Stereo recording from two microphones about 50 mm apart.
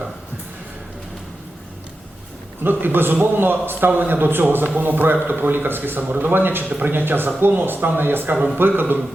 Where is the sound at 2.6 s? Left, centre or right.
Right.